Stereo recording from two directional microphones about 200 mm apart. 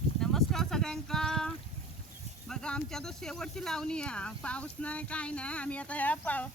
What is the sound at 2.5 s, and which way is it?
Speech, 5° left (ahead or behind).